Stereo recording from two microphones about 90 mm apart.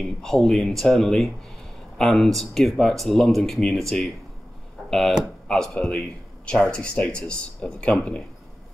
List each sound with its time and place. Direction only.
0.0 s speech: 5° left (ahead or behind)
4.8 s a sound: 5° left (ahead or behind)
5.5 s speech: 5° left (ahead or behind)